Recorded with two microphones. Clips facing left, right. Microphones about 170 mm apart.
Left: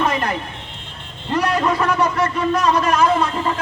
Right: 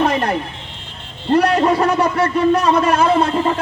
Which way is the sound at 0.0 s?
30° right (ahead or behind).